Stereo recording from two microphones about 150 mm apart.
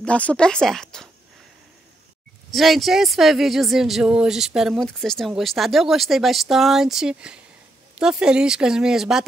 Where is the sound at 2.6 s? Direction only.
Centre (ahead or behind).